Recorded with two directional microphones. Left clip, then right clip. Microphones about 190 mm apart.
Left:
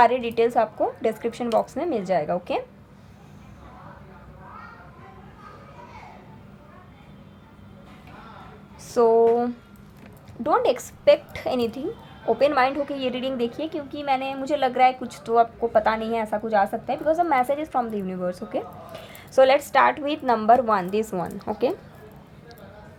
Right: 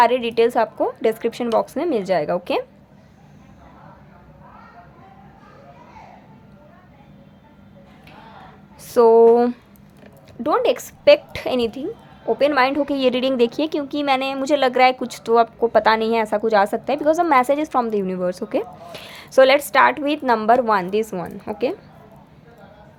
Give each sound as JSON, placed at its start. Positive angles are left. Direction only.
{"t": 0.0, "sound": "a woman's voice", "side_deg": -25}
{"t": 8.8, "sound": "a woman's voice", "side_deg": -30}